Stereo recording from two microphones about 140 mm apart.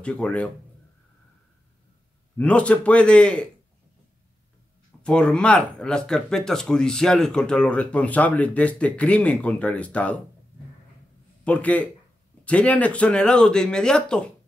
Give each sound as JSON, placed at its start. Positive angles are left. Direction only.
{"t": 0.0, "sound": "speech", "side_deg": 5}
{"t": 2.3, "sound": "speech", "side_deg": 10}
{"t": 5.0, "sound": "speech", "side_deg": 5}
{"t": 11.4, "sound": "speech", "side_deg": 10}